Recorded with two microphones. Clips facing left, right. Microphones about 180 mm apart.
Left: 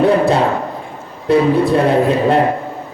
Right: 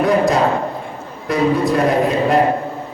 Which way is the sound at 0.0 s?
30° left (ahead or behind).